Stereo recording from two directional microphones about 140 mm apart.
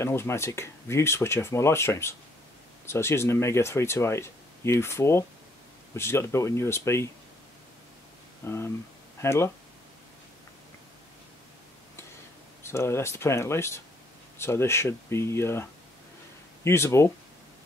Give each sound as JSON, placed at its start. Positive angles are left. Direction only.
{"t": 0.0, "sound": "speech", "side_deg": 20}
{"t": 8.5, "sound": "speech", "side_deg": 15}
{"t": 12.6, "sound": "speech", "side_deg": 20}